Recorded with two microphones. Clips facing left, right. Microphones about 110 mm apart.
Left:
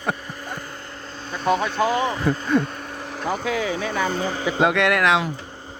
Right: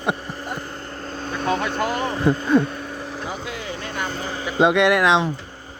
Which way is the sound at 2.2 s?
25° right (ahead or behind).